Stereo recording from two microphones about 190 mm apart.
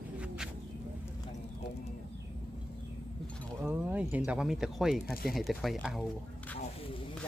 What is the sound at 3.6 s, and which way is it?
Speech, 10° right (ahead or behind).